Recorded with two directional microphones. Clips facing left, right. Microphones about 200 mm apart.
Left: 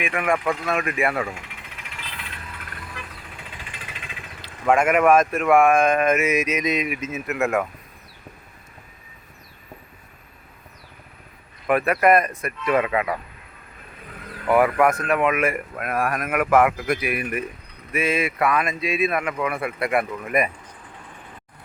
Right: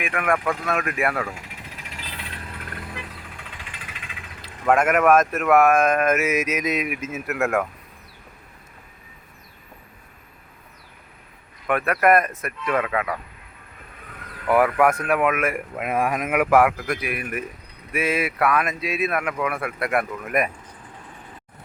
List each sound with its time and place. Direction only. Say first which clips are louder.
0.0 s speech: left 1 dB; centre (ahead or behind)
1.4 s jackhammer: right 1 dB; 40° right (ahead or behind)
4.4 s speech: even; centre (ahead or behind)
7.3 s speech: even; 5° left (ahead or behind)
11.7 s speech: left 1 dB; centre (ahead or behind)
12.7 s speech: left 3 dB; 10° left (ahead or behind)
14.4 s speech: even; centre (ahead or behind)
15.7 s speech: right 1 dB; 20° right (ahead or behind)
16.7 s speech: left 3 dB; 5° left (ahead or behind)